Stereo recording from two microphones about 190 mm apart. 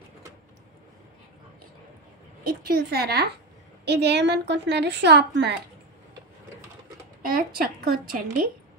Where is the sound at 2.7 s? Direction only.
55° right (ahead or behind).